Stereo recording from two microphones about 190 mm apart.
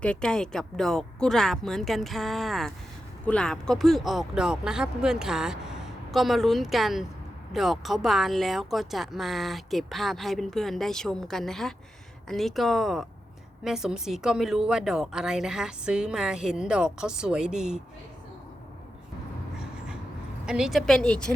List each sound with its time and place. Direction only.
0.0 s speech: 5° left (ahead or behind)
20.4 s speech: 5° right (ahead or behind)